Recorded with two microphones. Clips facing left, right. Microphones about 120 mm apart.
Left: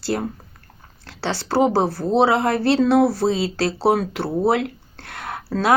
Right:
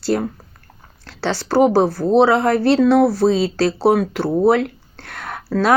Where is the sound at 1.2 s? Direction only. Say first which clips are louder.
Right 3 dB; 60° right (ahead or behind).